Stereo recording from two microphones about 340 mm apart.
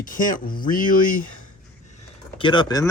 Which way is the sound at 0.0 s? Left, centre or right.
Left.